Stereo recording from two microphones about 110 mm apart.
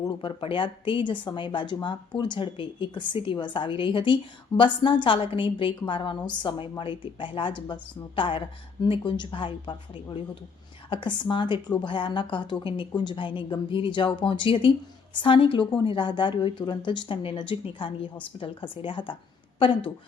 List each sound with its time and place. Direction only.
0.0 s a woman's voice: 45° left (ahead or behind)